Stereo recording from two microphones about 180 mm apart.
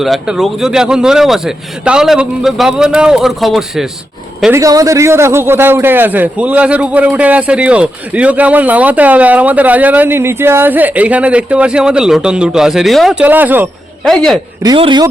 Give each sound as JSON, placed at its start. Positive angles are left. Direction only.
{"t": 0.0, "sound": "a man's voice", "side_deg": 0}
{"t": 4.5, "sound": "a man's voice", "side_deg": -20}
{"t": 14.0, "sound": "a man's voice", "side_deg": 5}
{"t": 14.6, "sound": "speech", "side_deg": -25}